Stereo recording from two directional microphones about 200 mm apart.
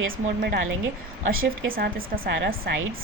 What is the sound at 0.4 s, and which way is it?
Speech, 50° right (ahead or behind).